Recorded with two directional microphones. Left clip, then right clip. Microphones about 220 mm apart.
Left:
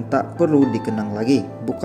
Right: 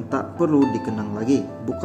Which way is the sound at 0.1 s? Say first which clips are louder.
Left 3 dB; 20° left (ahead or behind).